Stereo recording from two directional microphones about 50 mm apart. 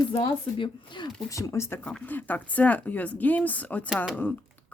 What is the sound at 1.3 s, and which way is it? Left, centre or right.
Speech, left.